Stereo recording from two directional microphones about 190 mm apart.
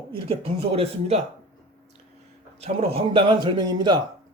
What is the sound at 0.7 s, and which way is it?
Speech, 30° right (ahead or behind).